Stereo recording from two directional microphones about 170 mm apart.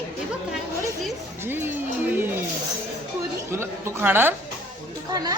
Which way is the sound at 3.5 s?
15° right (ahead or behind).